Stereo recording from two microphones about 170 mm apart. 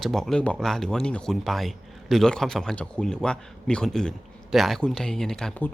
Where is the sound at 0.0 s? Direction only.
Centre (ahead or behind).